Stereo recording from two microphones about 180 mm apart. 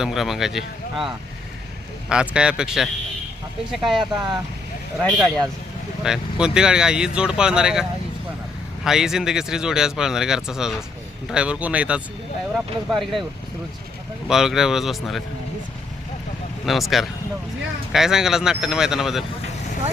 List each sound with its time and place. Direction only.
0.0 s speech: centre (ahead or behind)
3.9 s speech: 25° right (ahead or behind)
5.1 s speech: centre (ahead or behind)
14.3 s speech: centre (ahead or behind)
16.6 s speech: centre (ahead or behind)